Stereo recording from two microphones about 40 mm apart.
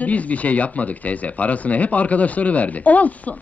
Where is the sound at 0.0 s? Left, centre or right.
Left.